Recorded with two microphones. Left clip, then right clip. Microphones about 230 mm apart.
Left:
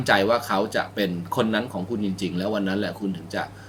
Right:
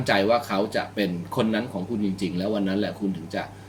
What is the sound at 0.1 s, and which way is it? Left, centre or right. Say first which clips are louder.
Speech: left 1 dB; centre.